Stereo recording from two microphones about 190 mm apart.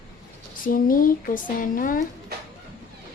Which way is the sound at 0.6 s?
50° left (ahead or behind).